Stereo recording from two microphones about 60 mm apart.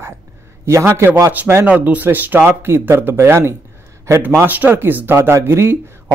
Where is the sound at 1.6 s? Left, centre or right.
Right.